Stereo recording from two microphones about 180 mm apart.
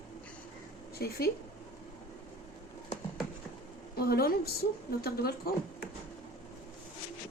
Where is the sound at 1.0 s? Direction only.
60° left (ahead or behind).